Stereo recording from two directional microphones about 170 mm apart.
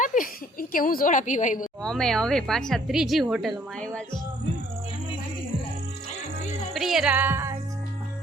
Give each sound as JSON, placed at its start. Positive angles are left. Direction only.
{"t": 0.0, "sound": "a sound", "side_deg": 50}
{"t": 0.7, "sound": "a woman's voice", "side_deg": 55}
{"t": 1.8, "sound": "a woman's voice", "side_deg": 5}
{"t": 6.7, "sound": "music", "side_deg": 0}